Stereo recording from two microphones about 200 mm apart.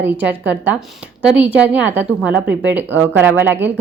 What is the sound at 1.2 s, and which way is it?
A woman's voice, 5° right (ahead or behind).